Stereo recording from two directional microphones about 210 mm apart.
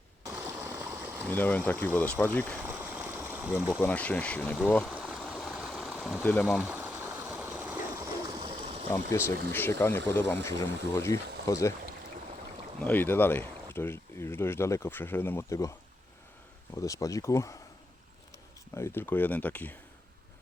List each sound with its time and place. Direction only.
0.3 s stream: 10° right (ahead or behind)
1.3 s speech: 10° left (ahead or behind)
2.6 s stream: 10° right (ahead or behind)
3.8 s speech: 10° left (ahead or behind)
5.0 s stream: 5° left (ahead or behind)
6.7 s stream: 10° right (ahead or behind)
8.4 s stream: 25° right (ahead or behind)
9.5 s speech: 10° left (ahead or behind)
12.8 s speech: 10° left (ahead or behind)
16.7 s speech: 15° left (ahead or behind)
18.8 s speech: 10° left (ahead or behind)